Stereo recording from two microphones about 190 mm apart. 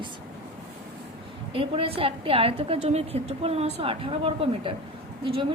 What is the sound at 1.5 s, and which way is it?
A woman's voice, 30° right (ahead or behind).